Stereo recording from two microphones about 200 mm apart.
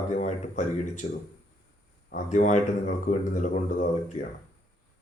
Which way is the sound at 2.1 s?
35° left (ahead or behind).